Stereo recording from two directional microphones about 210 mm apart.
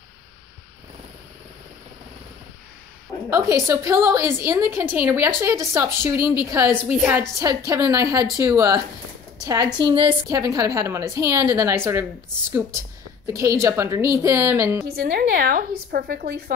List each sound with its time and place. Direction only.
3.3 s a woman's voice: 15° right (ahead or behind)
14.9 s a woman's voice: 45° right (ahead or behind)